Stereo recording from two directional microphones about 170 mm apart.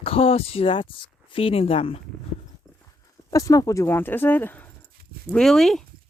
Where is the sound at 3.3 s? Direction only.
20° left (ahead or behind); by 5.9 s centre (ahead or behind).